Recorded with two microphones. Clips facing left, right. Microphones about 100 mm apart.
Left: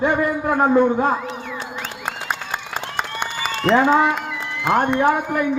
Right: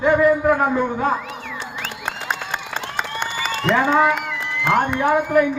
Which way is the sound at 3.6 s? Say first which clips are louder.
Left 2 dB; 30° left (ahead or behind).